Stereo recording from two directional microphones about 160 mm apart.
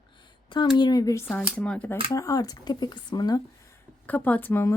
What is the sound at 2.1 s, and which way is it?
Speech, 20° left (ahead or behind).